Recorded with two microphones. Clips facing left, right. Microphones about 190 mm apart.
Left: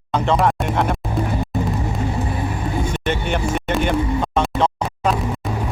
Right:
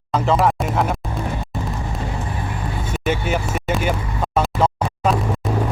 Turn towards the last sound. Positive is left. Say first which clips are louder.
# right 1 dB
turn(degrees=-5)  # may be behind; listen again after turning